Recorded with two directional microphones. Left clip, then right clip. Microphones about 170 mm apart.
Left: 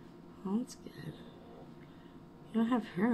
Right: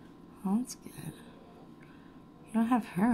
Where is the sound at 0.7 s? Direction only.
50° right (ahead or behind).